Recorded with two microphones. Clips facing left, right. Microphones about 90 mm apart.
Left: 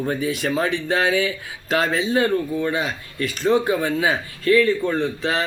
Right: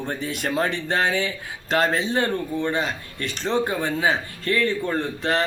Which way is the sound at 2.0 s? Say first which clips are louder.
Left 3 dB; 5° left (ahead or behind).